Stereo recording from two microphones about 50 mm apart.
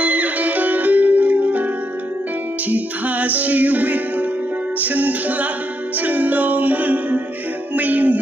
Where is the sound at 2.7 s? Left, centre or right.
Right.